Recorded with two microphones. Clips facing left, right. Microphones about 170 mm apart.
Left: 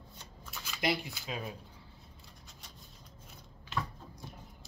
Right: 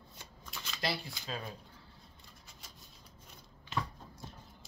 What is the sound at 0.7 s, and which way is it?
Shuffling cards, 15° left (ahead or behind).